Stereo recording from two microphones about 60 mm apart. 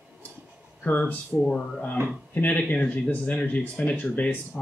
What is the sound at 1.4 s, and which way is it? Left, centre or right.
Speech, centre.